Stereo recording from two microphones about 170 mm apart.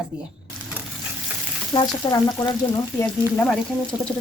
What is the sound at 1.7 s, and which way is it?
Frying, 25° left (ahead or behind).